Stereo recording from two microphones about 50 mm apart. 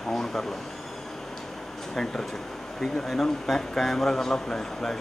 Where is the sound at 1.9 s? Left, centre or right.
Centre.